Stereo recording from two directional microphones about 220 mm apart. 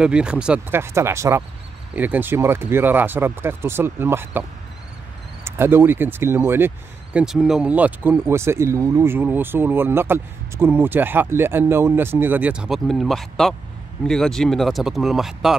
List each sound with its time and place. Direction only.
0.0 s speech: 5° right (ahead or behind)